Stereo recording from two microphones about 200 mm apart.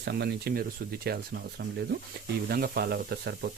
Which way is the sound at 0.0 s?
55° right (ahead or behind).